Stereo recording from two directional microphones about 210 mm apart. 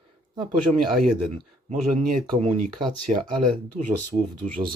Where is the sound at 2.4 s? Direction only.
30° right (ahead or behind).